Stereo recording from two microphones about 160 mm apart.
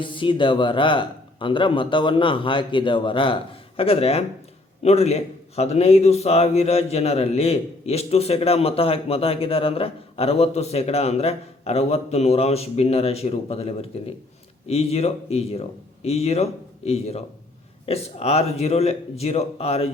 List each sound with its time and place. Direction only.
0.0 s a man's voice: 30° left (ahead or behind)